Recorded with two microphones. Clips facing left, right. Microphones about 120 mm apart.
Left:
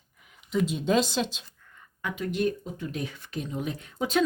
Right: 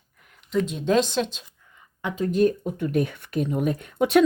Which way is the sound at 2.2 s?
40° right (ahead or behind).